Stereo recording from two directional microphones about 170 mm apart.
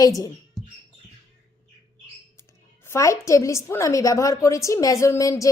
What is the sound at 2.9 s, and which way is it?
A woman's voice, 15° left (ahead or behind).